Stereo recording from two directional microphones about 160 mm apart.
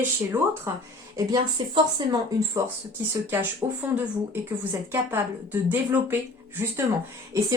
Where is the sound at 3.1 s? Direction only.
10° right (ahead or behind).